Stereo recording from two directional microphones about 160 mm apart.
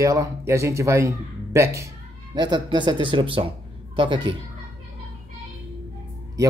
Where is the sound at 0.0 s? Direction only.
20° right (ahead or behind).